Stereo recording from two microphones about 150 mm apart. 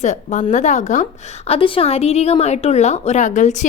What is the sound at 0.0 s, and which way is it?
A woman's voice, 50° left (ahead or behind).